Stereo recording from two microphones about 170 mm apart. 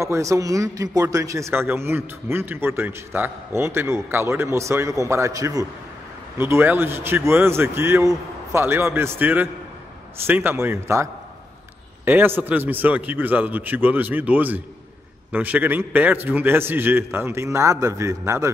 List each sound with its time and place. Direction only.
0.0 s speech: 15° right (ahead or behind)